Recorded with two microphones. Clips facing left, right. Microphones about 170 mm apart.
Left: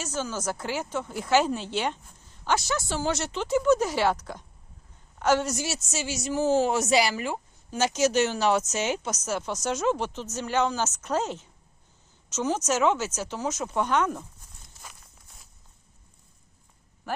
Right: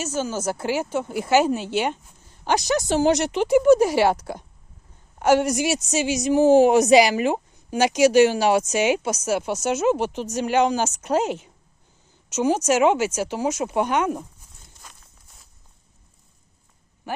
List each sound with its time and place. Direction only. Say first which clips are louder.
0.3 s a woman's voice: right 6 dB; 10° right (ahead or behind)
4.1 s speech: right 5 dB; 35° right (ahead or behind)
5.2 s a woman's voice: right 6 dB; 10° right (ahead or behind)
14.7 s walk: left 1 dB; 5° left (ahead or behind)